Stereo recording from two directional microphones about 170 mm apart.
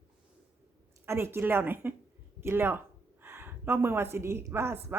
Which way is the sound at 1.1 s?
15° right (ahead or behind).